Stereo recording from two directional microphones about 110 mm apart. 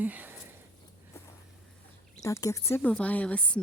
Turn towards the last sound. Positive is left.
turn(degrees=10)  # may be behind; listen again after turning